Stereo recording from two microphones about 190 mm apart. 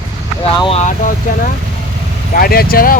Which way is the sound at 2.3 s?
50° left (ahead or behind).